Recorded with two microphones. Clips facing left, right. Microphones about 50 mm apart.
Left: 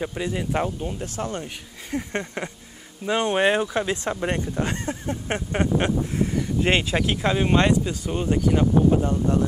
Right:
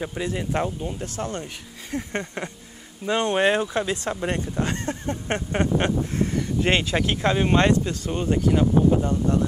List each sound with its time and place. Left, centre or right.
0.0 s speech: centre
1.0 s speech: left
1.4 s speech: centre
5.5 s speech: centre
7.0 s speech: centre